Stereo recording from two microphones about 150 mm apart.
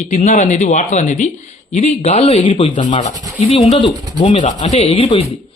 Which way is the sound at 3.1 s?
25° right (ahead or behind).